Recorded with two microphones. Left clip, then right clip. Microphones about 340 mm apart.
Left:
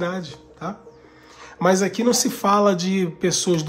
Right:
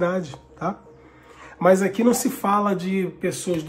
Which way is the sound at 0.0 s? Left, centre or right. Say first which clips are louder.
Right 3 dB; centre.